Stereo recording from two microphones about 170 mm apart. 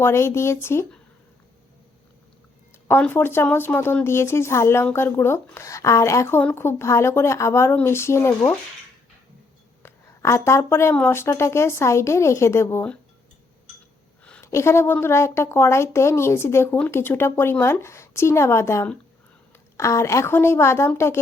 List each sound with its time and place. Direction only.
0.0 s speech: 15° left (ahead or behind)
2.8 s speech: 10° left (ahead or behind)
9.8 s speech: 15° left (ahead or behind)
14.3 s speech: 10° left (ahead or behind)